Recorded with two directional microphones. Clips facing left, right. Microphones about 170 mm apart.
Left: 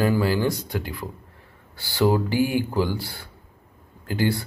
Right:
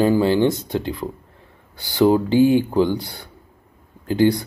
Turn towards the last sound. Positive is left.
turn(degrees=-20)  # may be behind; listen again after turning